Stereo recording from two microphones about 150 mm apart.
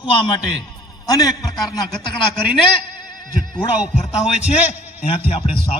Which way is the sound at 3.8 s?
5° right (ahead or behind).